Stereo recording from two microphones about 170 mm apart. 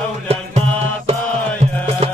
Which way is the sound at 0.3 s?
35° right (ahead or behind).